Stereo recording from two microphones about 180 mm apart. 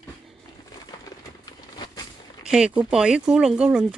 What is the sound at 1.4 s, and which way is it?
Vehicle, 20° left (ahead or behind).